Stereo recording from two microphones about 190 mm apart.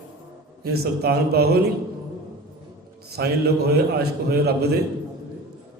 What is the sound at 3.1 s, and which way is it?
Speech, 55° right (ahead or behind).